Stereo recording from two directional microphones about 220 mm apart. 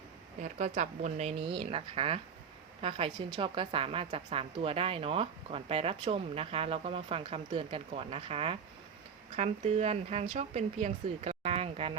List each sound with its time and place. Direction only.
0.6 s a woman's voice: 30° right (ahead or behind)